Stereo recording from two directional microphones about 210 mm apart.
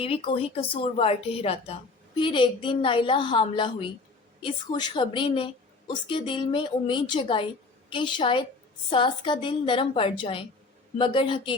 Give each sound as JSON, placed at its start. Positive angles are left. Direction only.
{"t": 0.0, "sound": "a woman's voice", "side_deg": 25}